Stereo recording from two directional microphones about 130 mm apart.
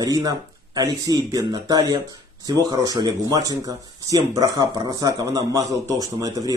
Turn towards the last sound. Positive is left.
turn(degrees=-25)  # may be behind; listen again after turning